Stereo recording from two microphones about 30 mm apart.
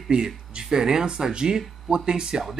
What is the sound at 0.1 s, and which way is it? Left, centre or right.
Speech, right.